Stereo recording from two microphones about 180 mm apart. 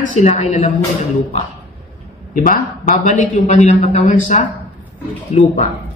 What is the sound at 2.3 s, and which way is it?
A man's voice, 50° left (ahead or behind).